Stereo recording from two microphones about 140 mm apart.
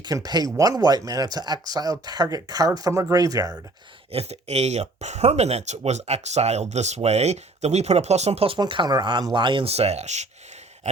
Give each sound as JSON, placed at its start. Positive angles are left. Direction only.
{"t": 0.0, "sound": "speech", "side_deg": -25}
{"t": 4.1, "sound": "speech", "side_deg": -50}
{"t": 8.5, "sound": "speech", "side_deg": -35}